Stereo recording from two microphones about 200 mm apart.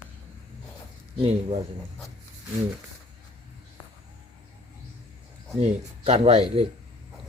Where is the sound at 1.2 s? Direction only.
30° right (ahead or behind).